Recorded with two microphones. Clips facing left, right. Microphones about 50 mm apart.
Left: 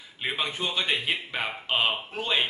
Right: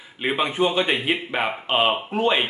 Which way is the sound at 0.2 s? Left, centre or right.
Centre.